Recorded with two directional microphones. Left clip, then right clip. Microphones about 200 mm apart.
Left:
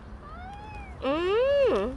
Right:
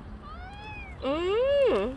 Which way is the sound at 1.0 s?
5° left (ahead or behind).